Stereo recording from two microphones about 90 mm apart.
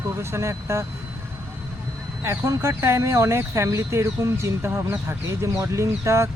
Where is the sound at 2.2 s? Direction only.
30° right (ahead or behind).